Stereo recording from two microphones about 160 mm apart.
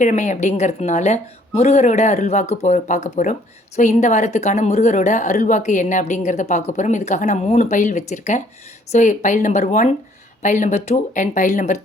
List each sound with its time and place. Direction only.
0.0 s a woman's voice: 50° left (ahead or behind)